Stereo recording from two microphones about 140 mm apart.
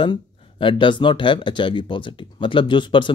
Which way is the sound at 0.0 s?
35° left (ahead or behind).